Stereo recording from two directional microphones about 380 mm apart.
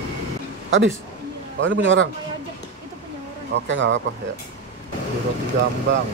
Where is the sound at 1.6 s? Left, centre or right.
Right.